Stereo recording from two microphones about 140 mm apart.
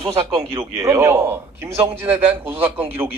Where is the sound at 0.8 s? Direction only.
20° right (ahead or behind).